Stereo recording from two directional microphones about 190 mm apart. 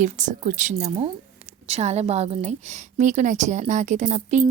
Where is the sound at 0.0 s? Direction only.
40° right (ahead or behind).